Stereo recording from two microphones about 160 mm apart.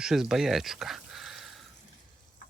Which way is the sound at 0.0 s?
5° right (ahead or behind).